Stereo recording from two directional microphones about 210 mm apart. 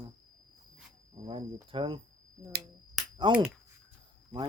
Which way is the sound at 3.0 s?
Centre (ahead or behind).